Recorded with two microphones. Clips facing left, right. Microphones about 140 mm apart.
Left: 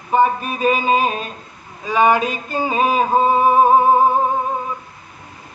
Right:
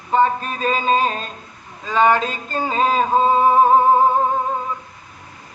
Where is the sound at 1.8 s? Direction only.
10° left (ahead or behind).